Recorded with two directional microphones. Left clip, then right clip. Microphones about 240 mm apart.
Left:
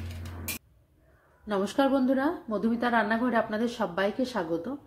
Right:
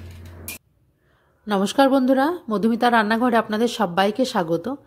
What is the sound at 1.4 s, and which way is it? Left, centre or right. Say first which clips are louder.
A woman's voice: right 8 dB; right.